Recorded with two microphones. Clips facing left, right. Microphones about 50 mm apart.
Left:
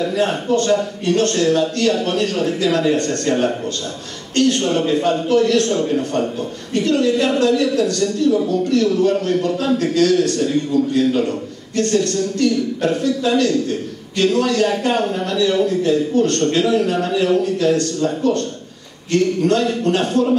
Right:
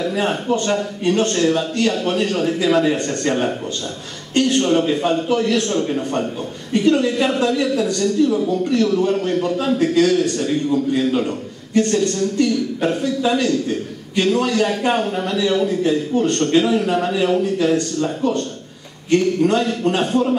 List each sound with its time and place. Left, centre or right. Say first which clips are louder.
0.1 s a man's voice: left 2 dB; centre
6.7 s a man's voice: even; centre
19.4 s a man's voice: even; centre